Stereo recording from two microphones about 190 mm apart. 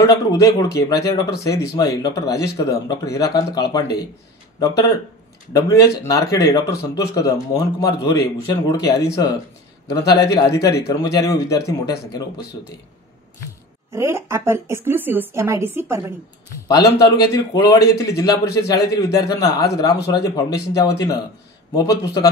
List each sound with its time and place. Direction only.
0.0 s a man's voice: 15° left (ahead or behind)
13.9 s a woman's voice: 15° right (ahead or behind)
16.6 s a man's voice: 20° left (ahead or behind)